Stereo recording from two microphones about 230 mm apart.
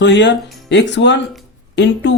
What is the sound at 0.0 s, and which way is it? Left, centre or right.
Speech, left.